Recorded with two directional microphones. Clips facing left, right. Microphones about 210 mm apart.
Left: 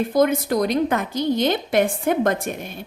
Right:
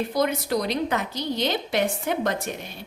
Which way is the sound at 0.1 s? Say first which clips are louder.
Left 5 dB; 50° left (ahead or behind).